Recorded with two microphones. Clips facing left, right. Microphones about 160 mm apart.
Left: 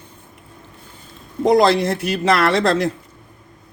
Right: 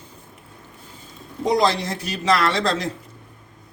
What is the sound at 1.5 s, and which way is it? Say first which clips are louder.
Speech: left 6 dB; 60° left (ahead or behind).